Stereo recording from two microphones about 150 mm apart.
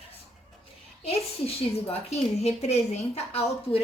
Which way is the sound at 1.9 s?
45° left (ahead or behind).